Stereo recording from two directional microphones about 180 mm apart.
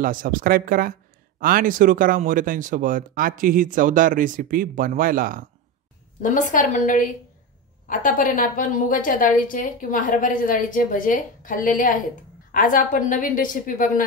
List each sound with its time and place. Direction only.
0.0 s speech: 50° right (ahead or behind)
6.2 s a woman's voice: 45° left (ahead or behind)